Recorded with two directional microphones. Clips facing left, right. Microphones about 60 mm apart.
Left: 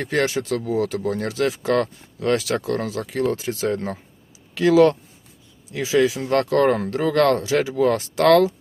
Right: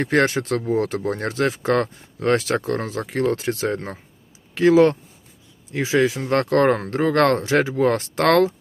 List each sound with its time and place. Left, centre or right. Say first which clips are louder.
0.0 s speech: right 3 dB; right